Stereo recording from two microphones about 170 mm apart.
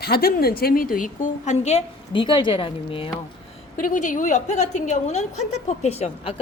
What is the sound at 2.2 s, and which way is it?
Speech, 30° left (ahead or behind).